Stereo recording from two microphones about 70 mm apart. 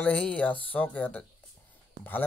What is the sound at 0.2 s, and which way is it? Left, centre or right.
A man's voice, centre.